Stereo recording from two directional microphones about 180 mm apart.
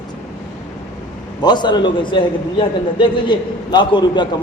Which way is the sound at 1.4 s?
25° left (ahead or behind).